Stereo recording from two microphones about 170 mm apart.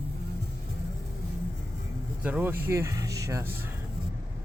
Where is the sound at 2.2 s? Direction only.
10° right (ahead or behind).